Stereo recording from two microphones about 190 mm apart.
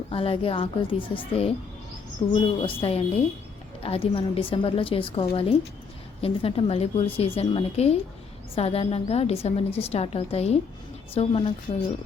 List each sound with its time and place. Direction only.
0.1 s a woman's voice: 30° left (ahead or behind)